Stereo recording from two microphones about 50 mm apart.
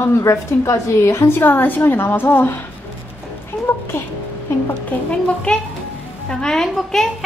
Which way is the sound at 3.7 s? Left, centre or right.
Left.